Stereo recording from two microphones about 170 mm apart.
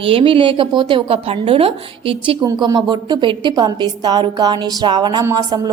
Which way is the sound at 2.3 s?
20° right (ahead or behind).